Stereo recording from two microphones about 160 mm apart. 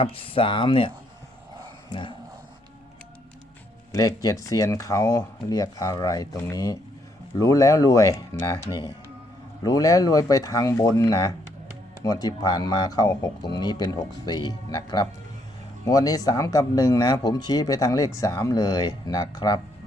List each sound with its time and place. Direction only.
0.0 s speech: 35° left (ahead or behind)
3.9 s speech: 20° left (ahead or behind)